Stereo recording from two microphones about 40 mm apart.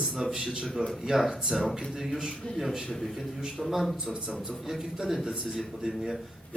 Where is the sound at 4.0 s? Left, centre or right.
Centre.